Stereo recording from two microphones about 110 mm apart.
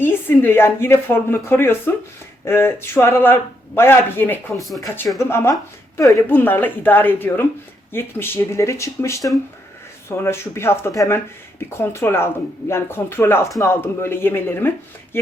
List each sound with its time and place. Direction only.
0.0 s speech: 20° left (ahead or behind)